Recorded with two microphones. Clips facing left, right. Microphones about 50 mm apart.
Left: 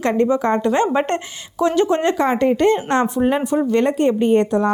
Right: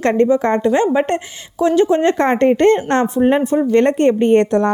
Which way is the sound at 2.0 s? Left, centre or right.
Right.